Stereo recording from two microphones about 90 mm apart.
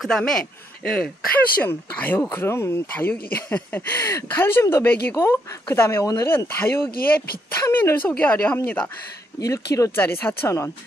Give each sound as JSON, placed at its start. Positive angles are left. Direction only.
{"t": 0.0, "sound": "a man's voice", "side_deg": 5}
{"t": 1.6, "sound": "speech", "side_deg": 20}
{"t": 3.1, "sound": "speech", "side_deg": 15}
{"t": 3.9, "sound": "speech", "side_deg": 30}
{"t": 9.4, "sound": "speech", "side_deg": 40}
{"t": 9.9, "sound": "speech", "side_deg": 25}